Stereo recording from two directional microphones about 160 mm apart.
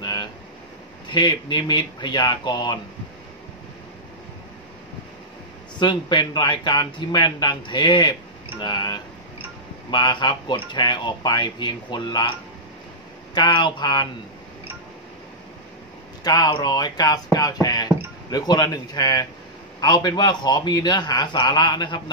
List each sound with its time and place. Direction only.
0.0 s a sound: 25° left (ahead or behind)
1.0 s speech: 30° left (ahead or behind)
5.8 s speech: 30° left (ahead or behind)
13.3 s speech: 30° left (ahead or behind)
16.3 s speech: 25° left (ahead or behind)